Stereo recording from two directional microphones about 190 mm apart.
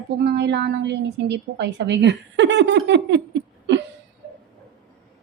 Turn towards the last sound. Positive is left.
turn(degrees=-70)  # may be behind; listen again after turning